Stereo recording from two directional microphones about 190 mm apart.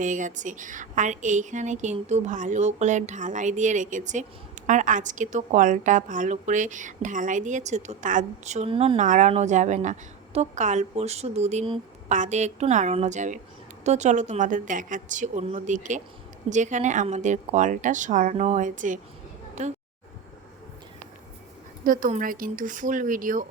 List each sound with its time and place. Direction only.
0.0 s a woman's voice: 40° right (ahead or behind)
9.0 s a woman's voice: 40° right (ahead or behind)
21.8 s speech: 45° right (ahead or behind)